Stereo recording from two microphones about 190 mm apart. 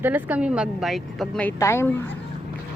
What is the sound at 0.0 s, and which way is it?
A woman's voice, 10° right (ahead or behind).